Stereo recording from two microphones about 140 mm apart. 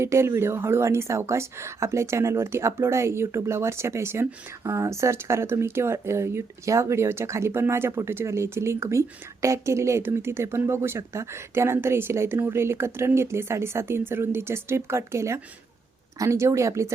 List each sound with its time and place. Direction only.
0.0 s a woman's voice: 20° right (ahead or behind)